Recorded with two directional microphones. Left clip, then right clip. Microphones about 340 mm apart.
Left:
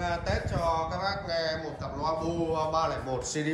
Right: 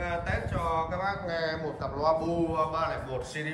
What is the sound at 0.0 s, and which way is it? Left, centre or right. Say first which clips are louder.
A man's voice: left 1 dB; centre.